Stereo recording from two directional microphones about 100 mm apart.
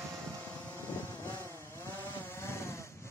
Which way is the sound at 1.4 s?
30° left (ahead or behind).